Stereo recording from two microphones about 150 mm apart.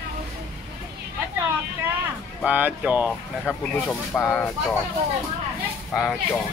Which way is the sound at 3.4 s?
5° left (ahead or behind).